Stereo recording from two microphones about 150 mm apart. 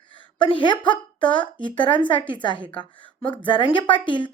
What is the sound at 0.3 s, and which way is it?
Speech, 35° left (ahead or behind).